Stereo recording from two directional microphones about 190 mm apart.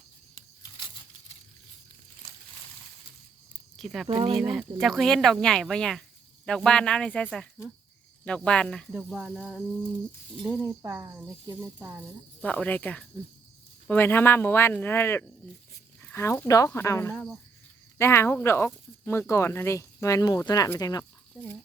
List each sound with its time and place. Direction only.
3.8 s speech: centre (ahead or behind)
4.0 s speech: 25° right (ahead or behind)
4.4 s speech: centre (ahead or behind)
10.8 s speech: 15° right (ahead or behind)
12.4 s speech: 5° left (ahead or behind)